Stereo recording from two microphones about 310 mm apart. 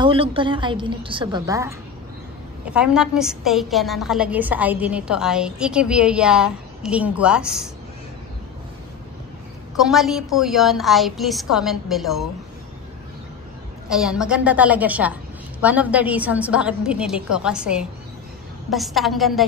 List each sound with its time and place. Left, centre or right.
0.0 s a woman's voice: centre
9.8 s a woman's voice: centre
13.8 s a woman's voice: centre